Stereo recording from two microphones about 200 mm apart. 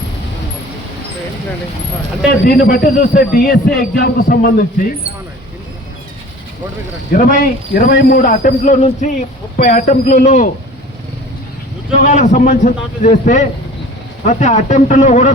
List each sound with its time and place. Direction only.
2.4 s a man's voice: 45° left (ahead or behind)
7.1 s a man's voice: 40° left (ahead or behind)
11.9 s a man's voice: 40° left (ahead or behind)